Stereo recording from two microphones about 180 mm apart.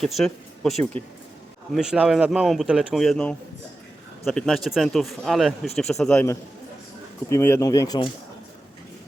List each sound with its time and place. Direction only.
0.0 s speech: centre (ahead or behind)
7.3 s speech: 15° left (ahead or behind)